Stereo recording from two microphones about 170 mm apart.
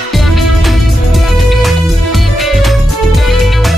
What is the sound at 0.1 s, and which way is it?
Music, centre (ahead or behind).